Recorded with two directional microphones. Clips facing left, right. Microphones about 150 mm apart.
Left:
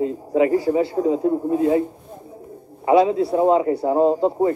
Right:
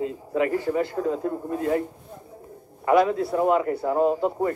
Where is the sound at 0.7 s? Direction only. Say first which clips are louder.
Left 6 dB; 15° left (ahead or behind).